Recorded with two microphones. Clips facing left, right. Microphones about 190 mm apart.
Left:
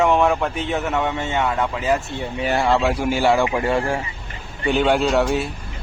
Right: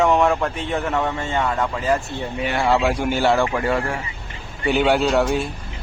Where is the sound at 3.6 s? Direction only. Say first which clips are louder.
Left 2 dB; 25° left (ahead or behind).